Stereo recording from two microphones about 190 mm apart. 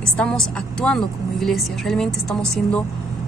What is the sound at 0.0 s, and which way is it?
A woman's voice, 5° left (ahead or behind).